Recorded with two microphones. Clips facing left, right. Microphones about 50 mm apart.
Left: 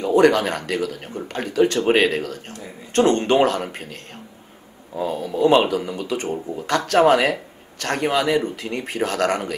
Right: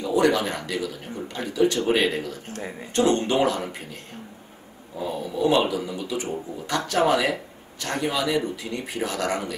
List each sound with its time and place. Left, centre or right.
0.0 s speech: left